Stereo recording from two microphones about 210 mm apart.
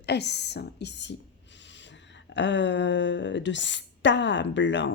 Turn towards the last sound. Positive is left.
turn(degrees=60)  # may be behind; listen again after turning